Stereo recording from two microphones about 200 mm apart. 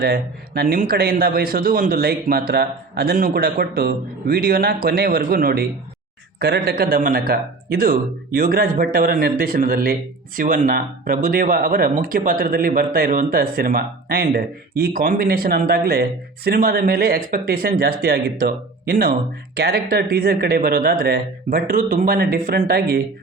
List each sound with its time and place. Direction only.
0.0 s speech: 50° right (ahead or behind)